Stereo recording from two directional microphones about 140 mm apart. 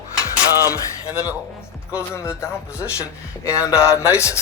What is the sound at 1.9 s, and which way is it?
Speech, 20° left (ahead or behind).